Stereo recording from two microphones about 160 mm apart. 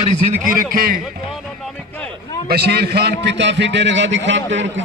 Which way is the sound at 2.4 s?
85° right.